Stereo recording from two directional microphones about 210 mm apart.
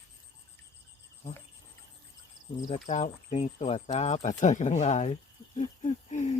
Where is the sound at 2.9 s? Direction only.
35° left (ahead or behind).